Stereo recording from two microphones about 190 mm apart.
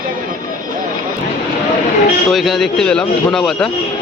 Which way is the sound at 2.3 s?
Centre (ahead or behind).